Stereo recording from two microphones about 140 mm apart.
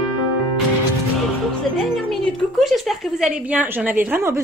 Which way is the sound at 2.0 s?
5° left (ahead or behind).